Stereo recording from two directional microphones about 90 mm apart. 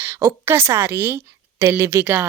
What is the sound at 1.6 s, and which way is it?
Speech, 30° right (ahead or behind).